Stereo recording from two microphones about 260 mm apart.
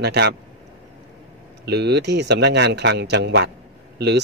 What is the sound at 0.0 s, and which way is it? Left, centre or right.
Speech, right.